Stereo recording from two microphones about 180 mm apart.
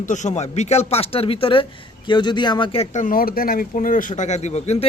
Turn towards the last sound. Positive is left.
turn(degrees=35)  # may be behind; listen again after turning